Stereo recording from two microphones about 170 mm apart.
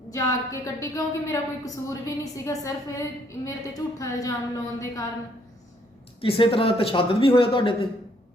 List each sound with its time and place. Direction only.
0.1 s a woman's voice: 20° left (ahead or behind)
6.2 s a man's voice: 30° left (ahead or behind)